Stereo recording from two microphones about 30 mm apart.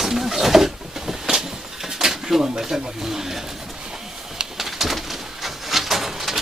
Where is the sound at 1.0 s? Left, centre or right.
Centre.